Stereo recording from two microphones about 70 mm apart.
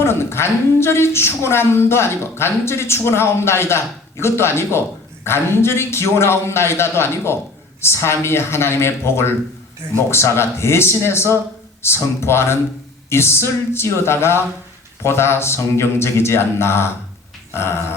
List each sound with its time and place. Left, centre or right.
0.0 s a woman's voice: left
17.5 s dog: left